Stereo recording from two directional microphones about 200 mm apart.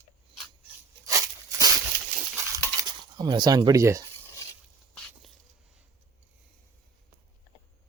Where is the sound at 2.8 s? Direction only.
20° right (ahead or behind).